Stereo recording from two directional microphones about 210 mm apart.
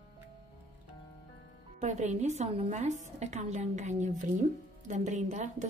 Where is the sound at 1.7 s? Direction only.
35° right (ahead or behind).